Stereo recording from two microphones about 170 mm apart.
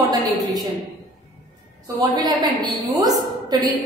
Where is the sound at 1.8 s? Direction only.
25° right (ahead or behind).